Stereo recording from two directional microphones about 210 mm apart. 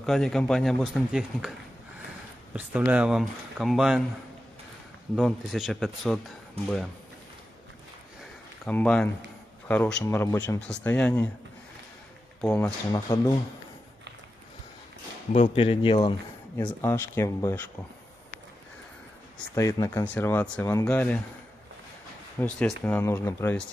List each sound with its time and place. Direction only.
0.0 s speech: centre (ahead or behind)
2.5 s speech: 10° right (ahead or behind)
5.1 s speech: centre (ahead or behind)
8.6 s speech: 5° left (ahead or behind)
12.4 s speech: 5° left (ahead or behind)
15.3 s speech: 30° left (ahead or behind)
16.5 s speech: 15° left (ahead or behind)
19.5 s speech: 15° left (ahead or behind)
22.4 s speech: 5° left (ahead or behind)